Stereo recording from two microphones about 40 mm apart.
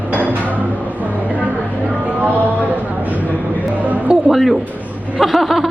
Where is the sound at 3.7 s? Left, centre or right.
Right.